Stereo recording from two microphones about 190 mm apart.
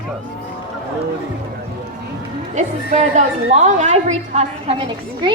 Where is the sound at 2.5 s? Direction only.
40° right (ahead or behind).